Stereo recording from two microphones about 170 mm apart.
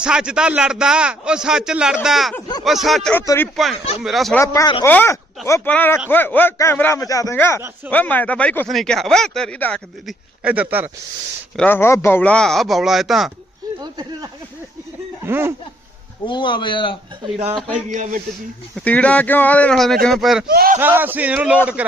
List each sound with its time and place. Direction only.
0.0 s a man's voice: 5° right (ahead or behind); by 3.5 s 10° left (ahead or behind)
4.0 s a man's voice: centre (ahead or behind)
4.4 s a man's voice: 20° left (ahead or behind)
10.4 s a man's voice: 10° right (ahead or behind)
11.5 s a man's voice: 10° left (ahead or behind)
13.6 s a sound: 20° right (ahead or behind)
15.3 s a man's voice: 15° right (ahead or behind)
16.2 s a man's voice: 30° left (ahead or behind)
17.5 s a man's voice: centre (ahead or behind)
17.8 s a man's voice: 45° right (ahead or behind)
18.9 s a man's voice: 10° left (ahead or behind)
20.5 s speech: 65° right (ahead or behind)
20.7 s a man's voice: 10° right (ahead or behind)